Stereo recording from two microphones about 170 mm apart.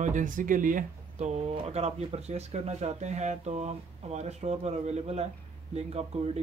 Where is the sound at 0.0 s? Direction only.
50° right (ahead or behind).